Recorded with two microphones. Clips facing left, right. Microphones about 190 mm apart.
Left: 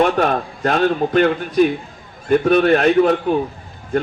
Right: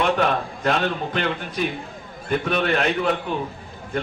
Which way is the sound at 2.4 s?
45° left (ahead or behind).